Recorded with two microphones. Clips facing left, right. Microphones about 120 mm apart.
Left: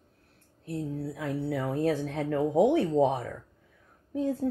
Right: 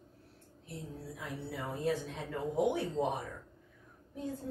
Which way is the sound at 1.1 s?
90° left.